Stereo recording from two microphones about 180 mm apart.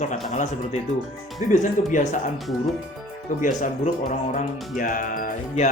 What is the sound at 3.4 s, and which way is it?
Speech, 45° left (ahead or behind).